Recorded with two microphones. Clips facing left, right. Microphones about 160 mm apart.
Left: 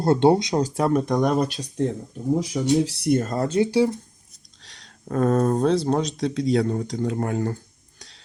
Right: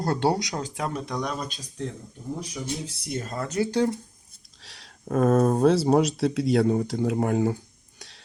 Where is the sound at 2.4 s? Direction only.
85° left; by 3.4 s 45° left (ahead or behind).